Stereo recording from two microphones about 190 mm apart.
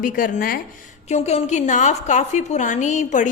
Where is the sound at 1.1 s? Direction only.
35° left (ahead or behind).